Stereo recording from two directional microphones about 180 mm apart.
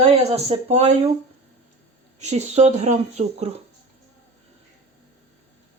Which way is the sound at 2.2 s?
40° right (ahead or behind).